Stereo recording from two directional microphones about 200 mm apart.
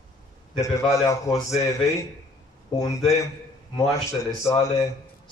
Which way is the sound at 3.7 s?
15° left (ahead or behind).